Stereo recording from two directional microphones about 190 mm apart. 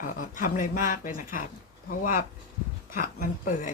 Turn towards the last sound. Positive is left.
turn(degrees=45)  # may be behind; listen again after turning